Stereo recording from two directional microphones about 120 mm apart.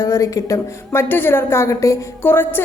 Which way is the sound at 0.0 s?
25° left (ahead or behind).